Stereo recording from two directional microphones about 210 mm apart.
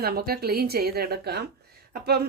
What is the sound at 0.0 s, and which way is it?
A woman's voice, 45° right (ahead or behind).